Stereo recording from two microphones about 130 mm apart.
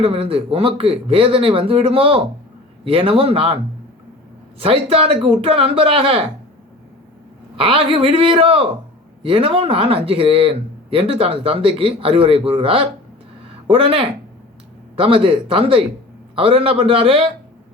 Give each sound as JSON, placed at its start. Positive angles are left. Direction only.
{"t": 0.0, "sound": "speech", "side_deg": -45}
{"t": 4.6, "sound": "speech", "side_deg": -45}
{"t": 7.5, "sound": "speech", "side_deg": -45}
{"t": 13.5, "sound": "a sound", "side_deg": -45}
{"t": 14.9, "sound": "speech", "side_deg": -45}